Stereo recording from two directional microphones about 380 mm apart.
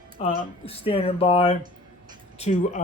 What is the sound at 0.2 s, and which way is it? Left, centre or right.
Speech, centre.